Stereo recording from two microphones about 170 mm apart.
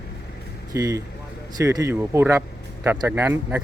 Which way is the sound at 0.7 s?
20° right (ahead or behind).